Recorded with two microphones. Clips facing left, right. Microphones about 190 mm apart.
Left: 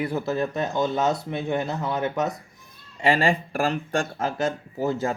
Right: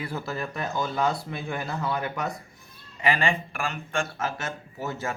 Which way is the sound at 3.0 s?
30° left (ahead or behind).